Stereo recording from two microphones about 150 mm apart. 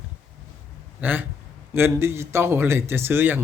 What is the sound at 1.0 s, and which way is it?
Speech, 15° right (ahead or behind).